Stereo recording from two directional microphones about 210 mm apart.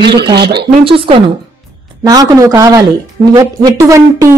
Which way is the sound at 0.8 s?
25° right (ahead or behind).